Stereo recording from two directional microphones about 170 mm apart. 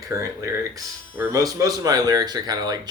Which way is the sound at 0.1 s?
20° right (ahead or behind).